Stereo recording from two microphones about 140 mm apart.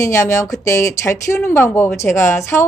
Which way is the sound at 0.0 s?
25° left (ahead or behind).